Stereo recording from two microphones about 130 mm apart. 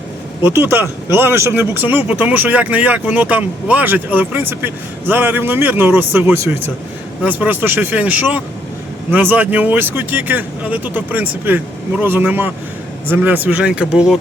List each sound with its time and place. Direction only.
0.4 s speech: 15° right (ahead or behind)